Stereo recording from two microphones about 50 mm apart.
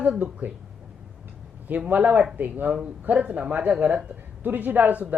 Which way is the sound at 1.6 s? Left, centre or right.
Right.